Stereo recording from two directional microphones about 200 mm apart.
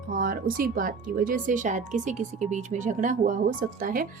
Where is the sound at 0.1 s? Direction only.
45° right (ahead or behind).